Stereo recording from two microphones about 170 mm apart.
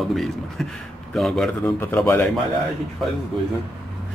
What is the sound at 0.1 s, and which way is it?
Speech, centre (ahead or behind).